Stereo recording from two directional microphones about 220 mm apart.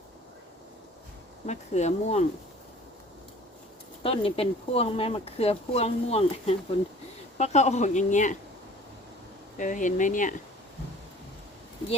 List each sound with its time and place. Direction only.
1.5 s speech: 30° left (ahead or behind)
4.0 s speech: 25° left (ahead or behind)
9.6 s speech: 35° left (ahead or behind)